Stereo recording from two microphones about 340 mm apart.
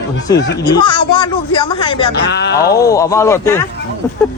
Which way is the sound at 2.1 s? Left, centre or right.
Left.